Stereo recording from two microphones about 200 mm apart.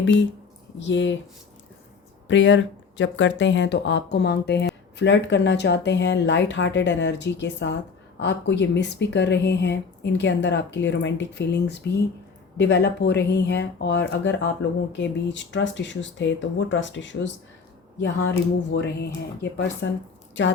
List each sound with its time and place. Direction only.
0.0 s speech: 65° left (ahead or behind)
2.2 s speech: 65° left (ahead or behind)